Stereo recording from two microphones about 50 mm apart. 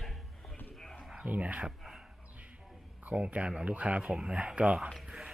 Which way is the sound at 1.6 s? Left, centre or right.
Centre.